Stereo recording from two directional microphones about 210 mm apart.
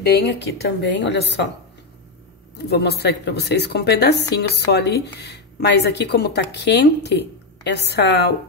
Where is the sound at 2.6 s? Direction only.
50° left (ahead or behind).